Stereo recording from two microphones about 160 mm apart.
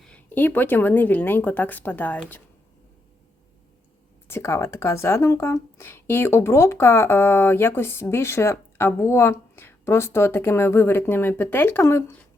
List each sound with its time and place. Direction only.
0.0 s speech: 10° left (ahead or behind)
4.3 s speech: 15° left (ahead or behind)